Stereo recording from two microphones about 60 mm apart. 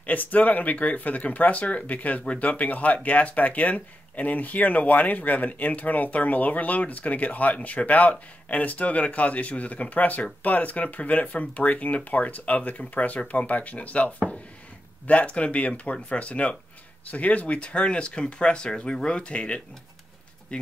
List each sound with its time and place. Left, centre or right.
0.0 s speech: left